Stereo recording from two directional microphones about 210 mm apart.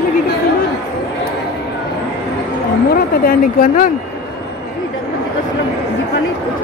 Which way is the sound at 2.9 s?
45° left (ahead or behind).